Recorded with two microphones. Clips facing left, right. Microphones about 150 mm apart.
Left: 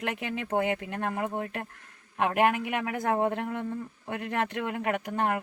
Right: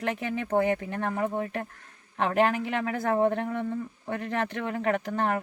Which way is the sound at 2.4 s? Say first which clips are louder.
Right 1 dB; 15° left (ahead or behind).